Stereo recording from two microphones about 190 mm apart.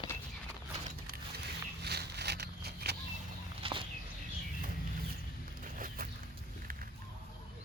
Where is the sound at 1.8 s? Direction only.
60° right (ahead or behind).